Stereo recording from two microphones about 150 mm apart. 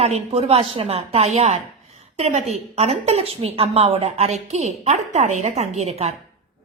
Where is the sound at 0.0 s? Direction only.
45° right (ahead or behind).